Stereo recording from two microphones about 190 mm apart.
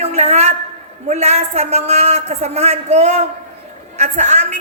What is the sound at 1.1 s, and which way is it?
A woman's voice, 35° right (ahead or behind).